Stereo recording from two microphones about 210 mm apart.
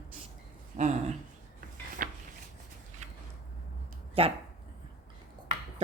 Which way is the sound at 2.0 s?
40° right (ahead or behind).